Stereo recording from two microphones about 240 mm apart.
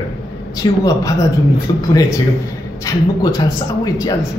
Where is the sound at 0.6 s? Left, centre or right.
Centre.